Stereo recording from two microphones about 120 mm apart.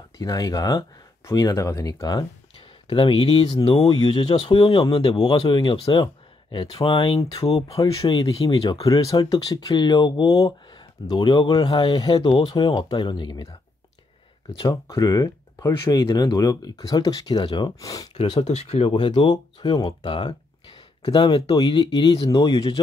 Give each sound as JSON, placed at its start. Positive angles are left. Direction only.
{"t": 0.2, "sound": "speech", "side_deg": 30}
{"t": 2.9, "sound": "speech", "side_deg": 45}
{"t": 5.2, "sound": "speech", "side_deg": 35}
{"t": 7.6, "sound": "speech", "side_deg": 30}
{"t": 12.3, "sound": "speech", "side_deg": 50}
{"t": 14.6, "sound": "speech", "side_deg": 30}
{"t": 18.4, "sound": "speech", "side_deg": 65}
{"t": 18.9, "sound": "speech", "side_deg": 45}